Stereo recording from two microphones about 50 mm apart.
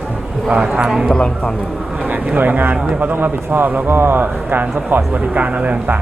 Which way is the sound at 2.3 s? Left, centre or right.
Right.